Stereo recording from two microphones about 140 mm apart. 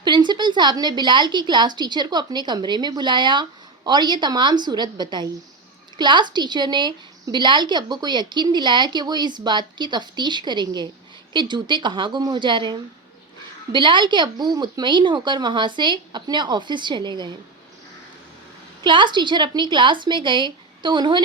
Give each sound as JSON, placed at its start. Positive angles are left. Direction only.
{"t": 0.0, "sound": "a woman's voice", "side_deg": -30}
{"t": 13.7, "sound": "a woman's voice", "side_deg": -35}
{"t": 18.8, "sound": "a woman's voice", "side_deg": -35}